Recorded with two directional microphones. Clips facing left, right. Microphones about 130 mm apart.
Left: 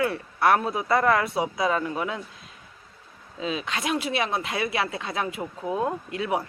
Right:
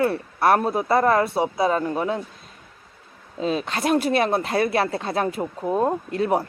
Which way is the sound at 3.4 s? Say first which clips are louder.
Right 5 dB; 45° right (ahead or behind).